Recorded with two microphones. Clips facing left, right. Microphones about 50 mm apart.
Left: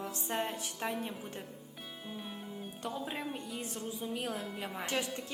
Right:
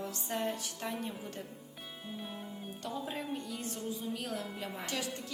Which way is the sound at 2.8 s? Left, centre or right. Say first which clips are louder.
Left 1 dB; centre.